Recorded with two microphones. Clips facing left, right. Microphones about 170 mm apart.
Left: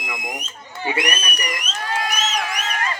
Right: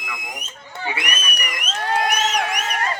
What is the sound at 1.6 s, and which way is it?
Crowd, 60° right (ahead or behind).